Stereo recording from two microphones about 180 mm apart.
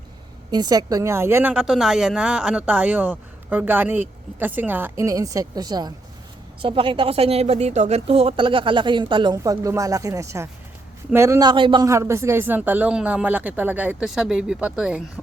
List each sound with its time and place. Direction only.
0.5 s speech: 20° right (ahead or behind); by 15.2 s 5° right (ahead or behind)